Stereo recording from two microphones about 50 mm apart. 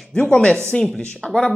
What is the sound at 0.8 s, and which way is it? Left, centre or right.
Speech, centre.